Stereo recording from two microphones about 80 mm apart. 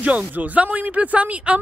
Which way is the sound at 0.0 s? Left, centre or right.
Centre.